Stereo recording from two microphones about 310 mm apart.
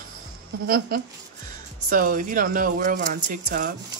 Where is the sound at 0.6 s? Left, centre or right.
Right.